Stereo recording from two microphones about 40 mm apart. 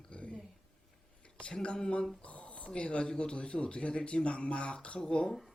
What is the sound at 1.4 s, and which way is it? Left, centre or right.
Speech, left.